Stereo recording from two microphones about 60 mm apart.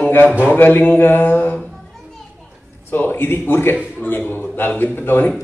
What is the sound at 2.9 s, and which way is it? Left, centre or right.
A man's voice, left.